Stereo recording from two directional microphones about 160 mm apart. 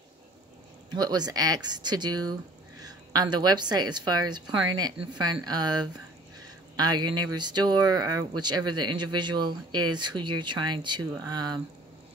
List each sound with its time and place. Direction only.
0.9 s speech: 25° right (ahead or behind)